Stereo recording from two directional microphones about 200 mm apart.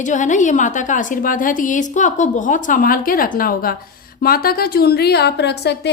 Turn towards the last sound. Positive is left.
turn(degrees=55)  # may be behind; listen again after turning